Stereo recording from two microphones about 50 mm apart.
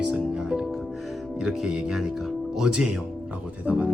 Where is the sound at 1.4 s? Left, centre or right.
Centre.